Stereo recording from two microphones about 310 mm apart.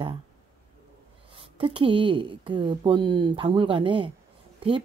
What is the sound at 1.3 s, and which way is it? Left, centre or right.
A woman's voice, centre.